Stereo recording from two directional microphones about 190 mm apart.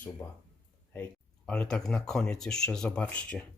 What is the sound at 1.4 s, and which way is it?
Speech, 5° left (ahead or behind).